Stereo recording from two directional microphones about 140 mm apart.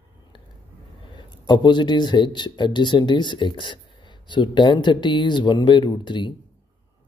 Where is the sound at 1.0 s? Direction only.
35° left (ahead or behind).